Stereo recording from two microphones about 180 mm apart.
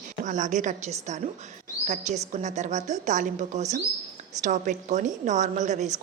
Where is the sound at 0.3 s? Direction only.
45° right (ahead or behind).